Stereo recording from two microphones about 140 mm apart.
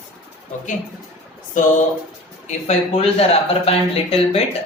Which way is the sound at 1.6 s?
65° left (ahead or behind).